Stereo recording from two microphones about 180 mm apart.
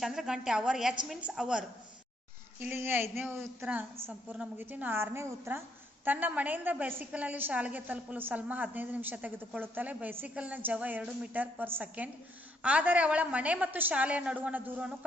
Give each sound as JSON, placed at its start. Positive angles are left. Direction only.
{"t": 0.0, "sound": "a woman's voice", "side_deg": 0}